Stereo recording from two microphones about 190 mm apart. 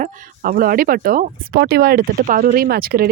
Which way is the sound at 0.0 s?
45° right (ahead or behind).